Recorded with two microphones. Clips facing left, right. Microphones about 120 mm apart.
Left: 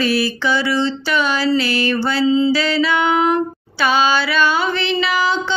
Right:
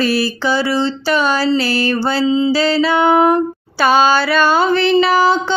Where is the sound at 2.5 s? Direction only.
35° right (ahead or behind).